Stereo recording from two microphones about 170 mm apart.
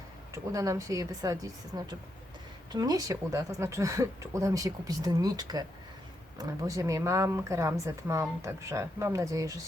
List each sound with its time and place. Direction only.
0.5 s a woman's voice: 20° right (ahead or behind)